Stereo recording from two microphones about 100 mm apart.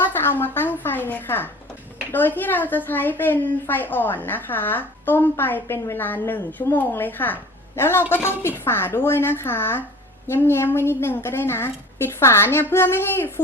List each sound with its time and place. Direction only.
0.0 s a woman's voice: 20° left (ahead or behind)